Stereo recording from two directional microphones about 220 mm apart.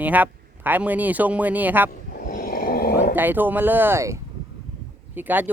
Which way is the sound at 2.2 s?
40° left (ahead or behind).